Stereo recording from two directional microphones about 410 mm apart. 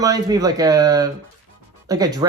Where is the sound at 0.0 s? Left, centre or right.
Centre.